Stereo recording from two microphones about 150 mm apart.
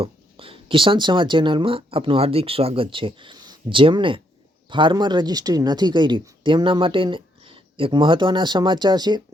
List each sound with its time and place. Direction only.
0.0 s speech: 40° right (ahead or behind)